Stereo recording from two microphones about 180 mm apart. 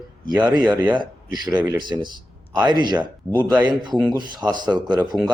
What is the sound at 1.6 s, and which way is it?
Speech, 25° right (ahead or behind).